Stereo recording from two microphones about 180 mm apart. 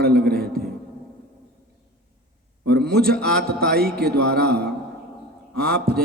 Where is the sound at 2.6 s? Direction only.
60° right (ahead or behind).